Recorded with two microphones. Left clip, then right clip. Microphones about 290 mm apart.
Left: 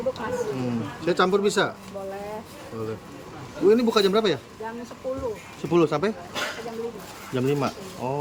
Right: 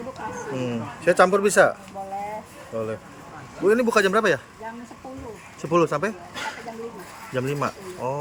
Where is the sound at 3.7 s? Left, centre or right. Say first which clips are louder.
Right 1 dB; centre.